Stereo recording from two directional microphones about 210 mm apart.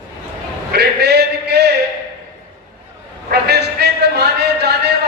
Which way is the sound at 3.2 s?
50° right (ahead or behind).